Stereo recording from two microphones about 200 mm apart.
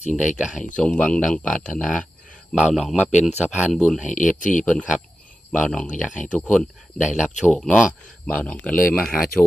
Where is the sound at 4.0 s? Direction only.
40° left (ahead or behind).